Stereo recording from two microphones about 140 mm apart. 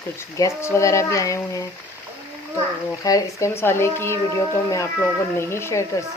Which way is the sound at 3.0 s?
25° left (ahead or behind).